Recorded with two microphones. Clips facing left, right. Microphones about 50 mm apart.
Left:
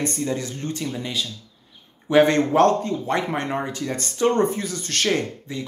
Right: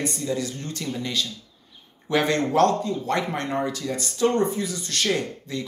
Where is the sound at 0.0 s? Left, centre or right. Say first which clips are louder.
Left 1 dB; left; by 1.2 s centre.